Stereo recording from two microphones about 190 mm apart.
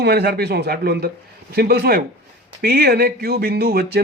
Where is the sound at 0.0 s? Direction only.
60° right (ahead or behind).